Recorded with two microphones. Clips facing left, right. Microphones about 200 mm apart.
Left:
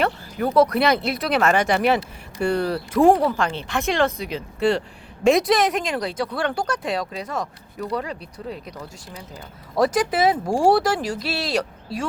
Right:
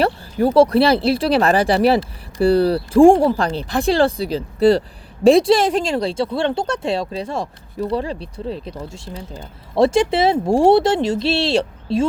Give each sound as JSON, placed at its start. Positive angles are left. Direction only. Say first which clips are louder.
{"t": 0.0, "sound": "speech", "louder": "right 5 dB", "side_deg": -30}